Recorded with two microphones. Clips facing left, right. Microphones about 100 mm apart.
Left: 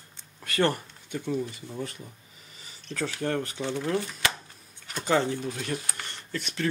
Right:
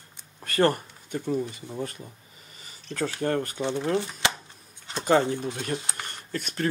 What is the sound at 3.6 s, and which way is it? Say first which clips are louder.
Speech: right 2 dB; 25° right (ahead or behind).